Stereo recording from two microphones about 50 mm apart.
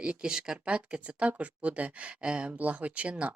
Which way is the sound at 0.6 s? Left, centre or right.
Right.